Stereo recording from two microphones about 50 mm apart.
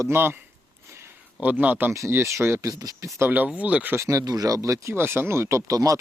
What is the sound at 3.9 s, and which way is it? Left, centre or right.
Speech, right.